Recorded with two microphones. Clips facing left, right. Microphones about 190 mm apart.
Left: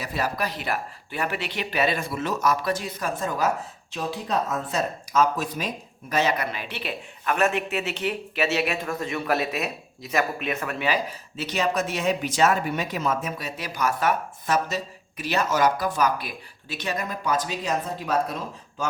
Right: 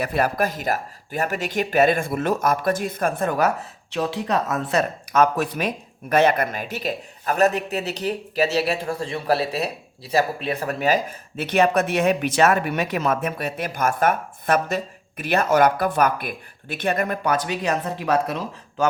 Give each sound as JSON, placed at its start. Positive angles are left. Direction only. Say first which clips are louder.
{"t": 0.0, "sound": "speech", "louder": "right 6 dB", "side_deg": -55}